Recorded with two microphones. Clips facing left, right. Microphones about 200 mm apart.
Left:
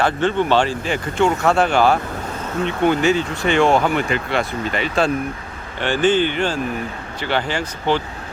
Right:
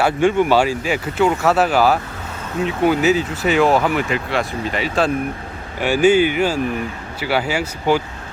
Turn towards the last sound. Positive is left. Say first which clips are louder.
# right 2 dB
turn(degrees=-10)  # may be behind; listen again after turning